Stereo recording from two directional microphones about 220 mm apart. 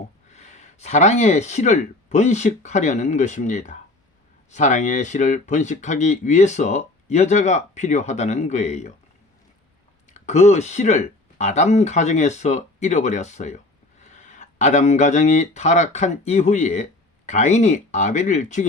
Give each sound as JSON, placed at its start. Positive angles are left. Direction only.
{"t": 0.3, "sound": "speech", "side_deg": 30}
{"t": 10.1, "sound": "speech", "side_deg": 30}